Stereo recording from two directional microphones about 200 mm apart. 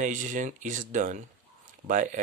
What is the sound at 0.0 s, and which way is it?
Speech, 40° right (ahead or behind).